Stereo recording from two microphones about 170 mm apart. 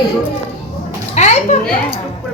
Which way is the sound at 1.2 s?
40° left (ahead or behind).